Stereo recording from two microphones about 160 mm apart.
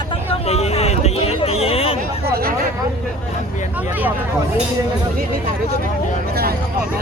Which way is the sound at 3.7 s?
10° right (ahead or behind).